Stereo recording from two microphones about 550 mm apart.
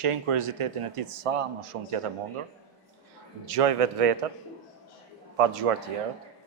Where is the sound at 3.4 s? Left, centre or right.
Right.